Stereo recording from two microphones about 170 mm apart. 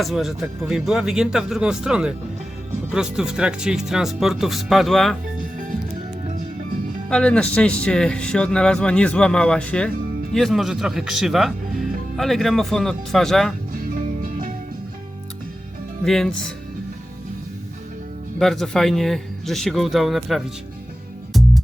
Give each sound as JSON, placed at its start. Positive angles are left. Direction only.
{"t": 0.0, "sound": "speech", "side_deg": 0}
{"t": 7.1, "sound": "speech", "side_deg": 5}
{"t": 13.9, "sound": "music", "side_deg": -55}
{"t": 16.0, "sound": "speech", "side_deg": 0}
{"t": 18.3, "sound": "speech", "side_deg": 0}
{"t": 21.3, "sound": "music", "side_deg": 0}